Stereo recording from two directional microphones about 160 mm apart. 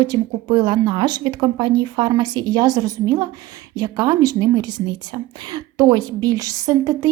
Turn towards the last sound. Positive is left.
turn(degrees=-20)  # may be behind; listen again after turning